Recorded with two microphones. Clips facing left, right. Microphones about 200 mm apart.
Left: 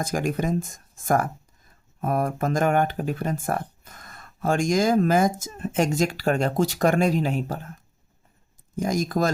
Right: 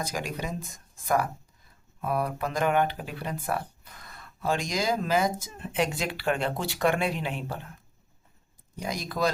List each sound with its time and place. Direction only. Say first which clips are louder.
0.0 s speech: left 7 dB; 50° left (ahead or behind)
8.7 s speech: left 9 dB; 45° left (ahead or behind)